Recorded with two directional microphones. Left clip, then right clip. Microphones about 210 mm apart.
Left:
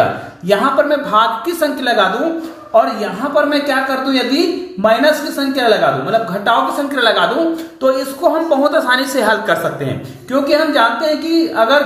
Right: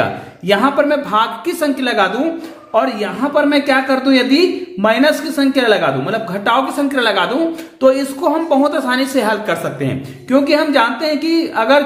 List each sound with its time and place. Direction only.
0.5 s a woman's voice: 45° right (ahead or behind)
10.3 s speech: 45° right (ahead or behind)